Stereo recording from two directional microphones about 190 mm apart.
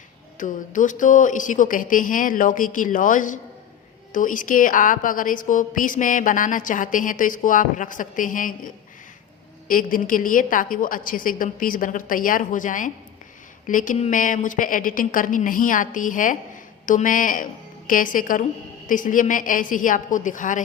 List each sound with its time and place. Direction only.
0.3 s a woman's voice: 45° left (ahead or behind)